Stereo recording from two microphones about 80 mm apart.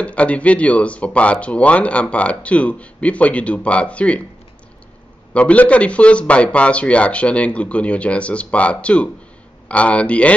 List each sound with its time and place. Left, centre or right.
0.0 s speech: centre
5.3 s speech: centre